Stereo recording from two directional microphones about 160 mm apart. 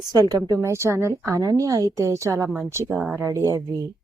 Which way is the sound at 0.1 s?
25° right (ahead or behind).